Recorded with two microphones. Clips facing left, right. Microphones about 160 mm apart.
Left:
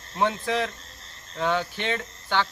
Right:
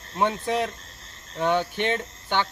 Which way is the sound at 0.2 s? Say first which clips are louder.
Right 1 dB; 15° right (ahead or behind).